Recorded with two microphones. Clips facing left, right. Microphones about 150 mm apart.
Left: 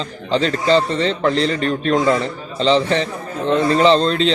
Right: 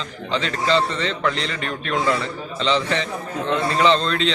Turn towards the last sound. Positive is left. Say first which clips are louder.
# left 4 dB
turn(degrees=35)  # may be behind; listen again after turning